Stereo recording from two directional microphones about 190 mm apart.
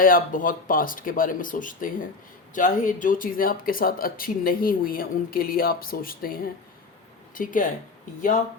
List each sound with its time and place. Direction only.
0.0 s speech: 45° left (ahead or behind)